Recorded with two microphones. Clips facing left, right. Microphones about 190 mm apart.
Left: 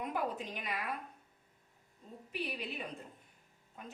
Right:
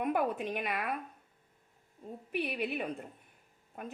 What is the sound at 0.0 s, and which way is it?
Speech, 60° right (ahead or behind).